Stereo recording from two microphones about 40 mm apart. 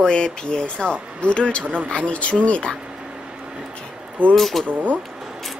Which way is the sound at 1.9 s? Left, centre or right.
Left.